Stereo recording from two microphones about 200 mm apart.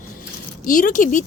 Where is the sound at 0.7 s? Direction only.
40° left (ahead or behind).